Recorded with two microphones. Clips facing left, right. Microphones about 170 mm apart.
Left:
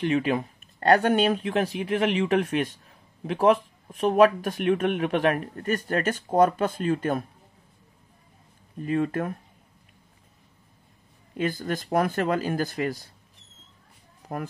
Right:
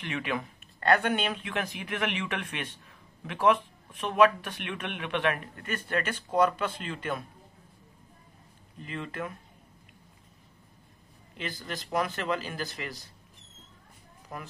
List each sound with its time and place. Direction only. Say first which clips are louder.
0.0 s speech: left 9 dB; 35° left (ahead or behind)
8.8 s speech: left 11 dB; 45° left (ahead or behind)
11.3 s speech: left 10 dB; 50° left (ahead or behind)
14.3 s speech: left 9 dB; 50° left (ahead or behind)